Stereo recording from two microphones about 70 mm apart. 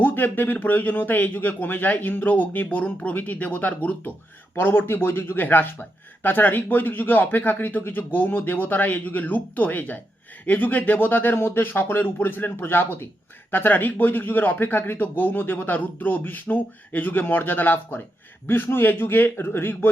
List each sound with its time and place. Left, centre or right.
0.0 s speech: left